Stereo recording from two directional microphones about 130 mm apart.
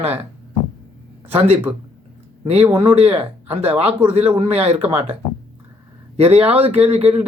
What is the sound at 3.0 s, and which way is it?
Speech, 50° right (ahead or behind).